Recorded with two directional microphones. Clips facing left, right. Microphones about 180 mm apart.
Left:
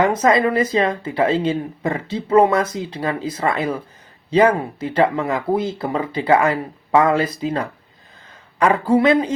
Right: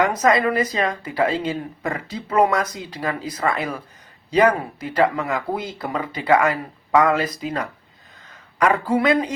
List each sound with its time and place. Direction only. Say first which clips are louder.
0.0 s speech: left 2 dB; 25° left (ahead or behind)